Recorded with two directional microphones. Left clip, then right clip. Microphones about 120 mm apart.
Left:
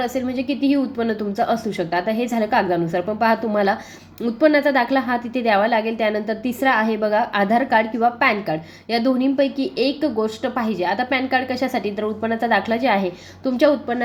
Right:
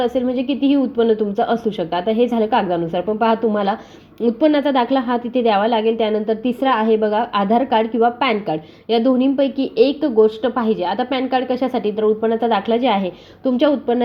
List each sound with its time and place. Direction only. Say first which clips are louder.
0.0 s a woman's voice: right 4 dB; 25° right (ahead or behind)